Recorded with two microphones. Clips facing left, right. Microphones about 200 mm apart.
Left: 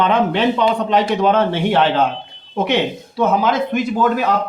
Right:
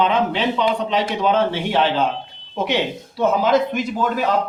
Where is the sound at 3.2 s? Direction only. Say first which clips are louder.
Even; 55° left (ahead or behind).